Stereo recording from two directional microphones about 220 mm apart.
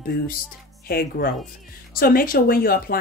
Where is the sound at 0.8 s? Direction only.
45° left (ahead or behind).